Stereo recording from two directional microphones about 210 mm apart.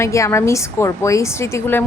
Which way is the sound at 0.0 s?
15° left (ahead or behind).